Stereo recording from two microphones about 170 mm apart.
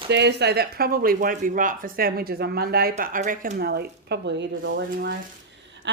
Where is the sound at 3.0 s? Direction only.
50° right (ahead or behind).